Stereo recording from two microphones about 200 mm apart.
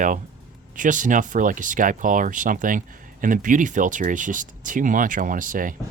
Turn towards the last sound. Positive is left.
turn(degrees=-40)  # may be behind; listen again after turning